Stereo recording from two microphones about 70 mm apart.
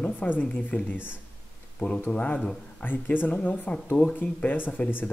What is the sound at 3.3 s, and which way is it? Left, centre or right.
Speech, centre.